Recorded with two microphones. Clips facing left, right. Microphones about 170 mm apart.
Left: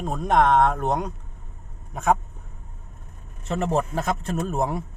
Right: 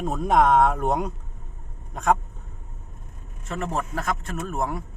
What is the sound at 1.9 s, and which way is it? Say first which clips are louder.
Speech: even; 5° left (ahead or behind).